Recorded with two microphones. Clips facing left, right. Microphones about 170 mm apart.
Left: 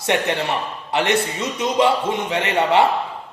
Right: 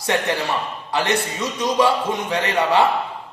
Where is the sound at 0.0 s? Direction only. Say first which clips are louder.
Left 1 dB; 25° left (ahead or behind).